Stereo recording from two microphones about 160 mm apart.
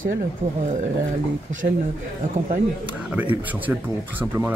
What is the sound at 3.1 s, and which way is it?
Speech, 10° right (ahead or behind).